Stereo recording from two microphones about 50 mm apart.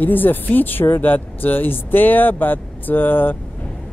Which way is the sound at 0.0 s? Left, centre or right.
Left.